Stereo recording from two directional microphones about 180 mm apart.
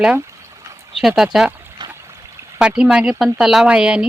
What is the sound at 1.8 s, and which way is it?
Trickle, 25° right (ahead or behind).